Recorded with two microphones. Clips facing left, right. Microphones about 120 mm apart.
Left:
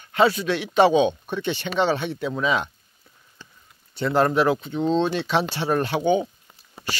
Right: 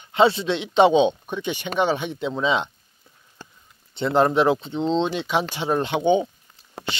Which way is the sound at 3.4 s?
45° right (ahead or behind).